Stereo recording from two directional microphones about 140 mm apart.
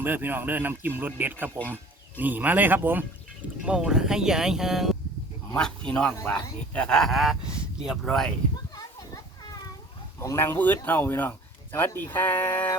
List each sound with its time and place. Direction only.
0.0 s speech: 15° right (ahead or behind); by 8.3 s centre (ahead or behind)
8.7 s children playing: 25° left (ahead or behind)
10.2 s speech: 15° left (ahead or behind)